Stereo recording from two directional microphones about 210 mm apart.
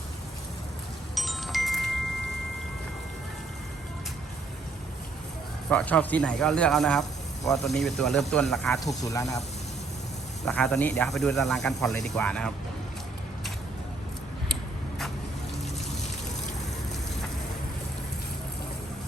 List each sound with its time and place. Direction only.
1.1 s chime: centre (ahead or behind)
5.7 s speech: 5° left (ahead or behind)
9.0 s speech: 15° left (ahead or behind)
10.4 s speech: 5° left (ahead or behind)
14.5 s a sound: centre (ahead or behind)